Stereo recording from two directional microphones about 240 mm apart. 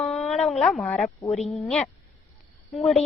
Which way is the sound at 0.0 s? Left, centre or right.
Centre.